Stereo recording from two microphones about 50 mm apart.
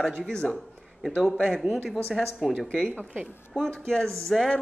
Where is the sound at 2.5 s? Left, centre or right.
Centre.